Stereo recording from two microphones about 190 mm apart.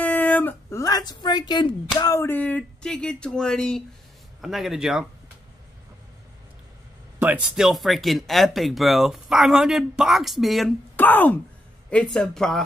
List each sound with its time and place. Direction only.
0.0 s a sound: 10° left (ahead or behind); by 1.7 s 25° left (ahead or behind)
2.0 s speech: 15° left (ahead or behind); by 5.0 s 5° right (ahead or behind)
7.2 s speech: 10° right (ahead or behind)